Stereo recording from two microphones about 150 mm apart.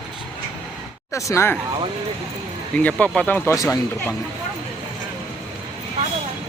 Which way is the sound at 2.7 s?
10° left (ahead or behind).